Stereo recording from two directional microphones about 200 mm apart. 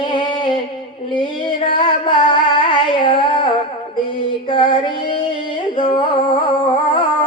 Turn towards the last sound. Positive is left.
turn(degrees=25)  # may be behind; listen again after turning